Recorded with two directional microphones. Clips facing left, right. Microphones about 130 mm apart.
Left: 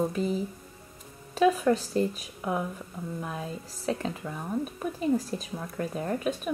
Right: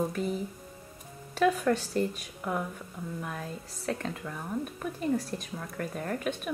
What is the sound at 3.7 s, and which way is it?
A woman's voice, 5° left (ahead or behind).